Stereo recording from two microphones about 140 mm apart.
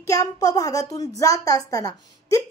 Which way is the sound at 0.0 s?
25° left (ahead or behind).